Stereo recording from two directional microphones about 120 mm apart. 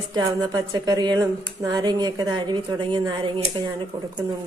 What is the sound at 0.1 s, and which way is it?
Speech, 35° right (ahead or behind).